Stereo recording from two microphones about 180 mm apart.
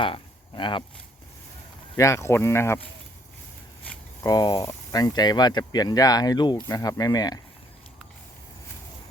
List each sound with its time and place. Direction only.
0.0 s speech: 25° left (ahead or behind)
2.0 s speech: 15° left (ahead or behind)
4.2 s speech: 20° left (ahead or behind)